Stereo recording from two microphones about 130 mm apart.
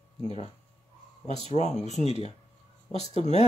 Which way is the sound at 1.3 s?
45° right (ahead or behind).